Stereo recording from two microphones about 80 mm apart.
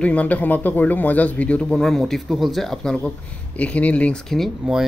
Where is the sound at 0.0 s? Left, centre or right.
Centre.